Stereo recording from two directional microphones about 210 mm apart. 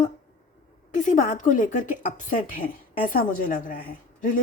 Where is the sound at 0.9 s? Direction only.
35° left (ahead or behind).